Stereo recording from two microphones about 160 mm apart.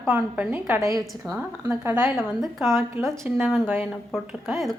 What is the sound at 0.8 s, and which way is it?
A woman's voice, 20° right (ahead or behind).